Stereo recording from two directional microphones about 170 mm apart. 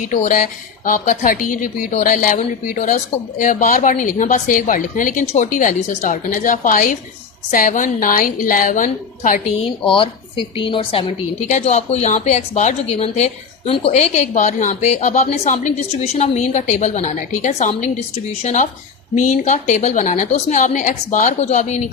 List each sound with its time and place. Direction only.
0.0 s speech: 50° left (ahead or behind)
9.6 s a woman's voice: 30° left (ahead or behind)
11.3 s speech: 45° left (ahead or behind)